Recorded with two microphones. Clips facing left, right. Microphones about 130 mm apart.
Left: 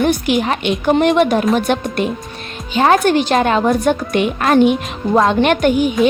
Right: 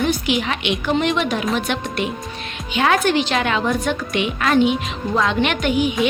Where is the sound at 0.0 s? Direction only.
55° left (ahead or behind).